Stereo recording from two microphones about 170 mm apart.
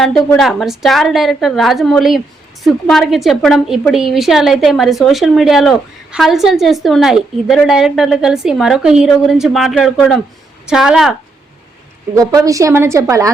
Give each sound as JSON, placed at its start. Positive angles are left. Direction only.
{"t": 0.0, "sound": "a woman's voice", "side_deg": 0}
{"t": 12.1, "sound": "a woman's voice", "side_deg": -20}